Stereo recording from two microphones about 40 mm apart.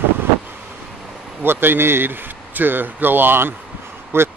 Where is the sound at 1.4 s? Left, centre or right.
Right.